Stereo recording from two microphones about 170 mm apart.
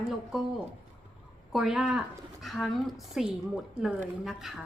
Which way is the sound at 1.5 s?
5° right (ahead or behind).